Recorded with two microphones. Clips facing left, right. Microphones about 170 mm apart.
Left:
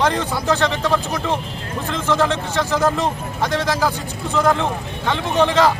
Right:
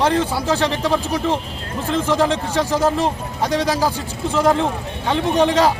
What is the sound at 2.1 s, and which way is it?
Speech, 35° right (ahead or behind).